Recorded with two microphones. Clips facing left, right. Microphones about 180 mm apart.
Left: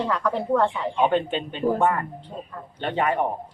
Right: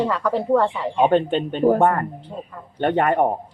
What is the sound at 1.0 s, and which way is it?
Speech, 45° right (ahead or behind).